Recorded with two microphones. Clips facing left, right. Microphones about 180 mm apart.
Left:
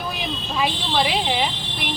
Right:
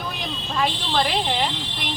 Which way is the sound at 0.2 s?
5° left (ahead or behind).